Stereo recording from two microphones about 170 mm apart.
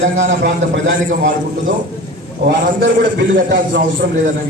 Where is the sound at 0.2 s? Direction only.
90° right.